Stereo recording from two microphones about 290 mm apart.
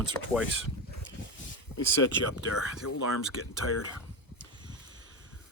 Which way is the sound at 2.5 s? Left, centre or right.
Left.